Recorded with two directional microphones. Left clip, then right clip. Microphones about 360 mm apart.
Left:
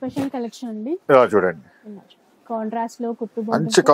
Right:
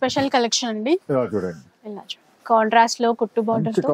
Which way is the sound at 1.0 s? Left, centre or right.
Centre.